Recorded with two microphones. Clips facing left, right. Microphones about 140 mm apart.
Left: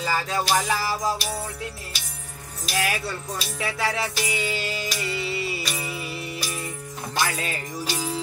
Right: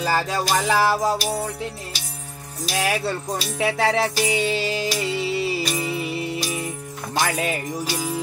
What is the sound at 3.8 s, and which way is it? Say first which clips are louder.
Music: right 5 dB; 30° right (ahead or behind).